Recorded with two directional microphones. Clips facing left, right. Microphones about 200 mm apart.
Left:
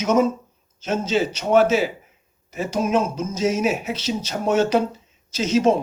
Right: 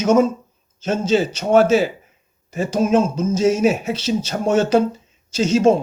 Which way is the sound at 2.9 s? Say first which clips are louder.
Right 5 dB; 30° right (ahead or behind).